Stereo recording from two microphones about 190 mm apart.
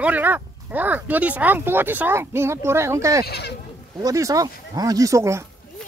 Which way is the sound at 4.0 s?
15° right (ahead or behind).